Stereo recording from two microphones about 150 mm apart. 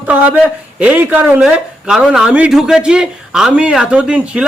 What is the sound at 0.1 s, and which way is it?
Speech, 10° right (ahead or behind).